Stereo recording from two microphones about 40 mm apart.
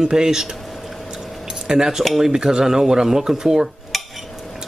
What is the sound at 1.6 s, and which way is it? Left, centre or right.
Speech, centre.